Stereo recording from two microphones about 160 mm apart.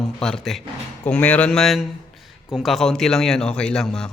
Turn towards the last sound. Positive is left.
turn(degrees=5)  # may be behind; listen again after turning